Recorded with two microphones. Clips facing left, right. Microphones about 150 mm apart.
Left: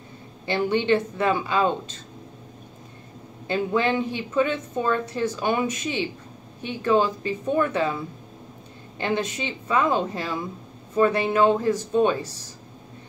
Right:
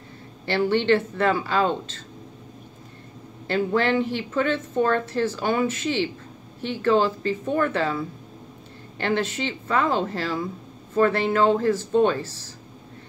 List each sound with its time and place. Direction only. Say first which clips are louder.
0.5 s a woman's voice: right 1 dB; 15° left (ahead or behind)
3.4 s a woman's voice: right 1 dB; 15° left (ahead or behind)